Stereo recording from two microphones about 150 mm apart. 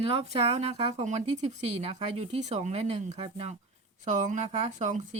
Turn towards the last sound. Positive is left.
turn(degrees=-55)  # may be behind; listen again after turning